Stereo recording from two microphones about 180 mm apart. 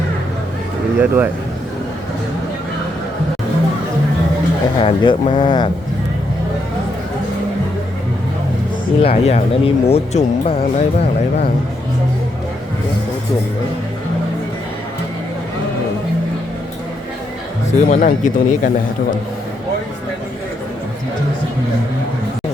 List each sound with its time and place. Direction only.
0.9 s speech: 10° right (ahead or behind)
4.8 s speech: 30° left (ahead or behind)
9.0 s speech: 35° left (ahead or behind)
17.7 s speech: 50° left (ahead or behind)